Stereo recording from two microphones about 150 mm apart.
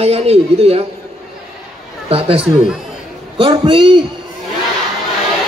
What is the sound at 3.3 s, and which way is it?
Speech, 35° right (ahead or behind).